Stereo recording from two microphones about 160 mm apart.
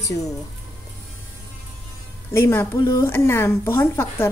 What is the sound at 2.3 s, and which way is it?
Speech, 15° left (ahead or behind).